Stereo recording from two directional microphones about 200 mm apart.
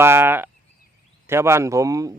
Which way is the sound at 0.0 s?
10° right (ahead or behind).